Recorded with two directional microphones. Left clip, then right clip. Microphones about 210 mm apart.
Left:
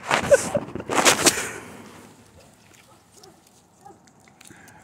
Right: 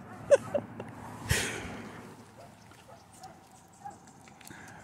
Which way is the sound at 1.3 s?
Centre (ahead or behind).